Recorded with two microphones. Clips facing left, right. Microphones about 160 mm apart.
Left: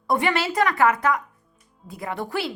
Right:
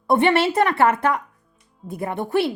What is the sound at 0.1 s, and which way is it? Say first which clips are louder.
Speech: right 5 dB; 25° right (ahead or behind).